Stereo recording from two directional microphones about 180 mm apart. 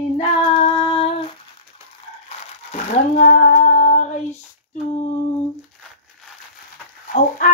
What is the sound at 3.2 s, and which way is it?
Female singing, 50° left (ahead or behind).